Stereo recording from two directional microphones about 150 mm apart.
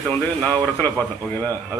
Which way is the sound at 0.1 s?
10° left (ahead or behind).